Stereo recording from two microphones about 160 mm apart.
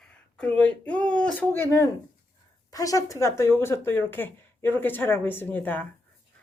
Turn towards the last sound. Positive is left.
turn(degrees=10)  # may be behind; listen again after turning